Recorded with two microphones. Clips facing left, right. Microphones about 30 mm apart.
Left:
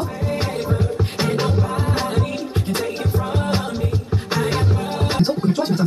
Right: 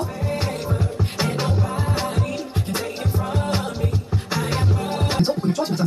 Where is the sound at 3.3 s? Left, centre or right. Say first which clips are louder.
Left 2 dB; centre.